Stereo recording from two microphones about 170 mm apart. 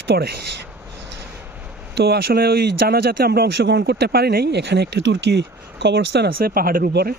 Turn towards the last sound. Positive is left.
turn(degrees=-60)  # may be behind; listen again after turning